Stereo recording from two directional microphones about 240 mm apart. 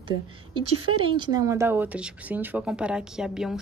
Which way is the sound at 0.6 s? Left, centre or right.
Right.